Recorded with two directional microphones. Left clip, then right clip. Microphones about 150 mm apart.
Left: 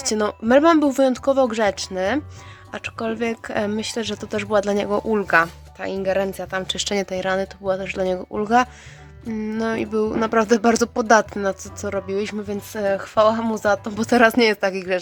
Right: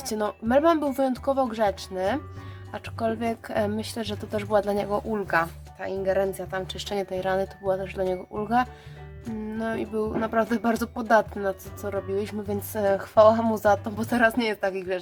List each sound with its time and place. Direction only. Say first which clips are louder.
0.0 s speech: left 6 dB; 25° left (ahead or behind)
14.2 s a woman's voice: left 7 dB; 30° left (ahead or behind)